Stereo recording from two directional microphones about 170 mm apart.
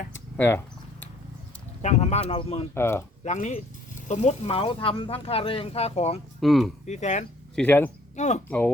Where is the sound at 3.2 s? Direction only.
45° left (ahead or behind).